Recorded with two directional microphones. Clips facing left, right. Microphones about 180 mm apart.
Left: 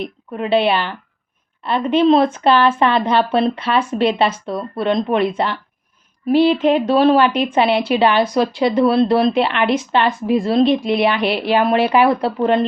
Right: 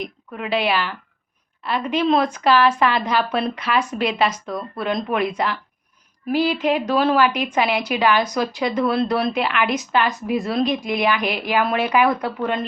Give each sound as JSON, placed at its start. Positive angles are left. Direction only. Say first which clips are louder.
{"t": 0.3, "sound": "speech", "louder": "left 5 dB", "side_deg": 30}